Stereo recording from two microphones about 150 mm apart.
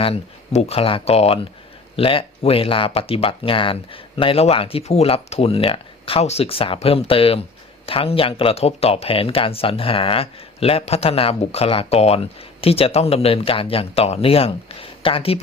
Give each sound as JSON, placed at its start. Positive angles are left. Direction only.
{"t": 0.0, "sound": "speech", "side_deg": 40}